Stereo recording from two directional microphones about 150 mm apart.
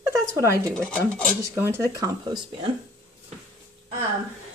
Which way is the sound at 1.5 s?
15° right (ahead or behind).